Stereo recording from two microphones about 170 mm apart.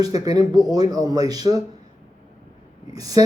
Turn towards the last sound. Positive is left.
turn(degrees=-20)  # may be behind; listen again after turning